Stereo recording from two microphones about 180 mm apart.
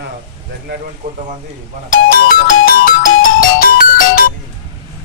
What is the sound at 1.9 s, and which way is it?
Music, 50° left (ahead or behind).